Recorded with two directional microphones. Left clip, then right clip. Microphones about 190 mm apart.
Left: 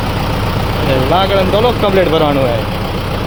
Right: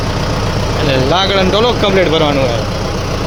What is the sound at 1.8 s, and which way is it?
Speech, centre (ahead or behind).